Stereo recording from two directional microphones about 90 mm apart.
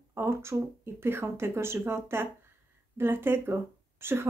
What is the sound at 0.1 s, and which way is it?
A woman's voice, 30° right (ahead or behind).